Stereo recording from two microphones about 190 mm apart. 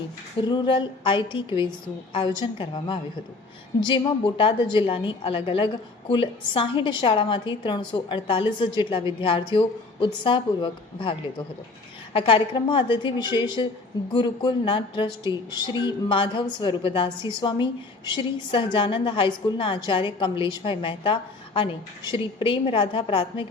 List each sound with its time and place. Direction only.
0.4 s a woman's voice: 25° left (ahead or behind)